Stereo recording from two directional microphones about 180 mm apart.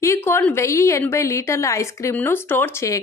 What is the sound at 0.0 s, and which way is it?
A woman's voice, 15° left (ahead or behind).